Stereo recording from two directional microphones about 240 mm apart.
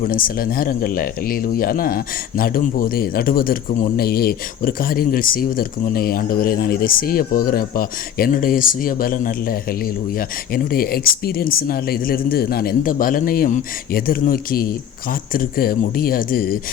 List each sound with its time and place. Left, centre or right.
0.0 s speech: left